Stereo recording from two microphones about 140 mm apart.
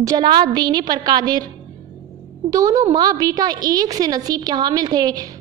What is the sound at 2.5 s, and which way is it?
A woman's voice, 25° right (ahead or behind).